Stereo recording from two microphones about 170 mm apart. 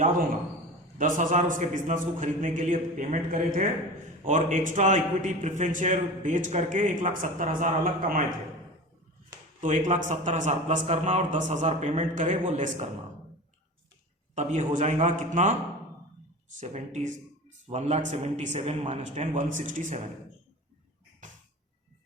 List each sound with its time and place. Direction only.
0.9 s a man's voice: 50° right (ahead or behind)
9.6 s a man's voice: 45° right (ahead or behind)
14.3 s a man's voice: 45° right (ahead or behind)
16.6 s a man's voice: 45° right (ahead or behind)